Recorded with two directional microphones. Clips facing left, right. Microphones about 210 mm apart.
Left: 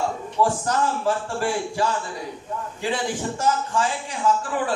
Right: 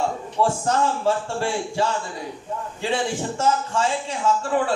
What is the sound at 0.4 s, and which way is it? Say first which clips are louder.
Speech: right 1 dB; 25° right (ahead or behind).